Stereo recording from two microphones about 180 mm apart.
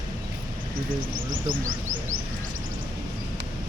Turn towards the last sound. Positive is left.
turn(degrees=-50)  # may be behind; listen again after turning